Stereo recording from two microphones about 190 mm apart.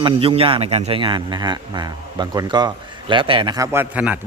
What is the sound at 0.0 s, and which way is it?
A man's voice, 30° right (ahead or behind).